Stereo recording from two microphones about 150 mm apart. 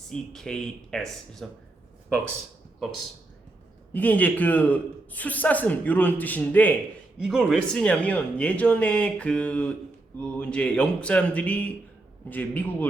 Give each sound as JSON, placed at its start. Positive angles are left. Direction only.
{"t": 0.1, "sound": "speech", "side_deg": 5}
{"t": 3.9, "sound": "a man's voice", "side_deg": 10}